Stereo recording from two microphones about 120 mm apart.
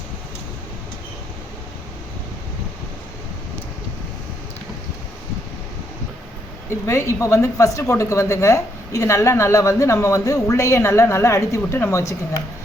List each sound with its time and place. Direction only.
6.7 s speech: 25° left (ahead or behind)